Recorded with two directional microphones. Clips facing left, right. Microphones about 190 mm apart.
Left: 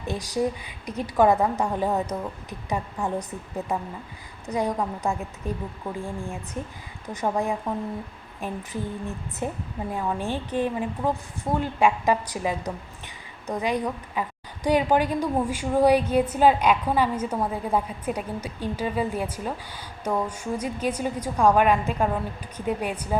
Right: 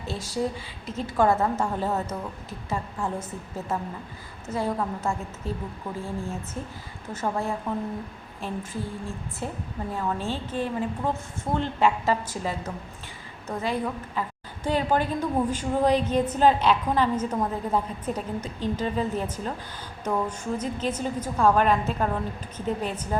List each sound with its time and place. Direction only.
0.1 s a woman's voice: 15° left (ahead or behind)
4.4 s a woman's voice: 15° left (ahead or behind)